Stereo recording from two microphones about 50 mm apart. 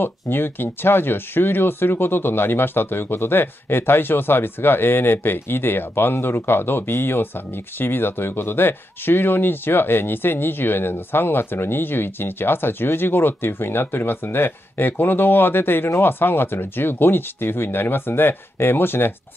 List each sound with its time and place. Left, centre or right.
0.0 s speech: left